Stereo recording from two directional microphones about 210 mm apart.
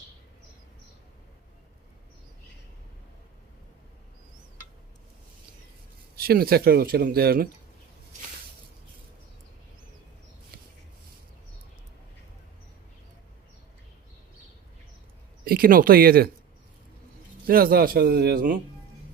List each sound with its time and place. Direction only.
6.1 s speech: 45° right (ahead or behind)
15.4 s speech: 45° right (ahead or behind)
17.4 s speech: 45° right (ahead or behind)